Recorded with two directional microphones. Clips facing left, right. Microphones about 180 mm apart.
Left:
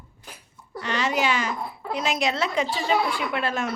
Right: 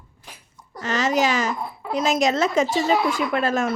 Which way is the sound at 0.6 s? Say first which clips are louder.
Right 3 dB; 40° right (ahead or behind).